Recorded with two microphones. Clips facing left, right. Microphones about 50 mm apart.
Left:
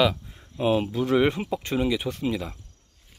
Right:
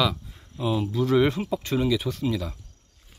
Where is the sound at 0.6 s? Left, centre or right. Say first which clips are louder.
Left 3 dB; left.